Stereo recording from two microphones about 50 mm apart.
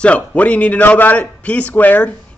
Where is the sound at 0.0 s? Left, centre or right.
Left.